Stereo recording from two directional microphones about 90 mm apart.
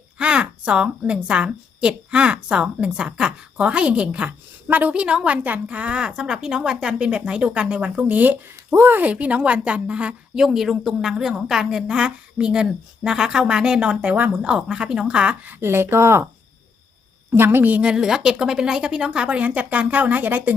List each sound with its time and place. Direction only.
0.2 s a woman's voice: 10° right (ahead or behind)
15.6 s speech: 30° right (ahead or behind)
17.3 s a woman's voice: 25° right (ahead or behind)